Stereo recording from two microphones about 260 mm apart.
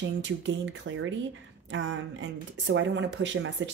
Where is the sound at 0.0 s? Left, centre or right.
Right.